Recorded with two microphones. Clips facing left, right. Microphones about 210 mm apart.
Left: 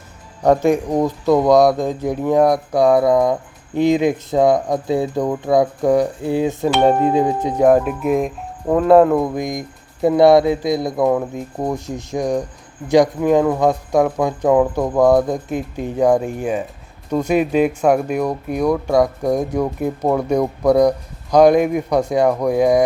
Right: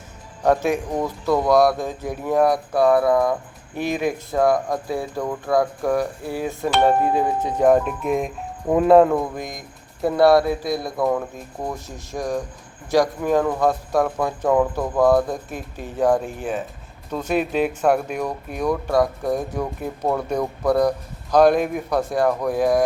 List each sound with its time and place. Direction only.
0.4 s speech: 15° left (ahead or behind)
9.1 s speech: 15° left (ahead or behind)